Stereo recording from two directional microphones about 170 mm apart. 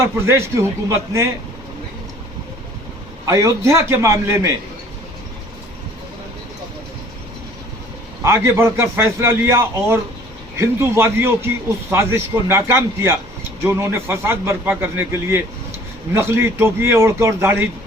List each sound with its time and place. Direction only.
0.0 s speech: 15° right (ahead or behind)
3.2 s speech: 20° right (ahead or behind)
8.2 s speech: 15° right (ahead or behind)